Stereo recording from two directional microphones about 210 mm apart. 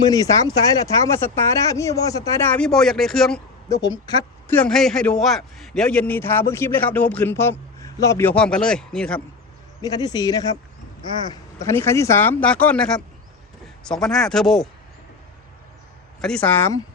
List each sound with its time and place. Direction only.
0.0 s a man's voice: 15° left (ahead or behind)
3.7 s a man's voice: 20° left (ahead or behind)
9.8 s a man's voice: 20° left (ahead or behind); by 14.7 s centre (ahead or behind)
16.2 s a man's voice: 5° left (ahead or behind)